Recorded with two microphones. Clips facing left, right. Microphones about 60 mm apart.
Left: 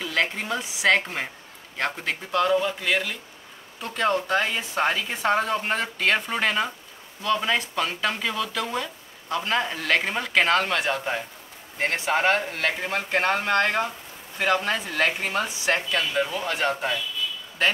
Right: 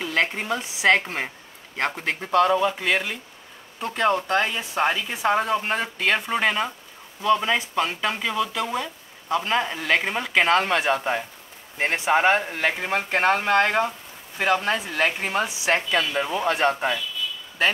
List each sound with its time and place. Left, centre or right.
0.0 s a sound: right
0.3 s a man's voice: centre
4.2 s speech: centre
10.5 s speech: centre
15.9 s a man's voice: right